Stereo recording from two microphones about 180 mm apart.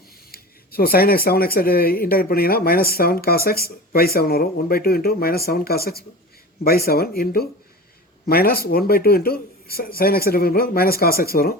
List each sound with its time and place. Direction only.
0.3 s speech: 55° left (ahead or behind)